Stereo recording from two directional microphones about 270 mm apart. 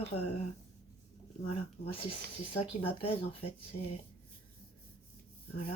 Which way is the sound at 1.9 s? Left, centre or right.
Left.